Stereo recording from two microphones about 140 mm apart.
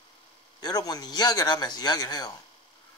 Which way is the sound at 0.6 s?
30° left (ahead or behind).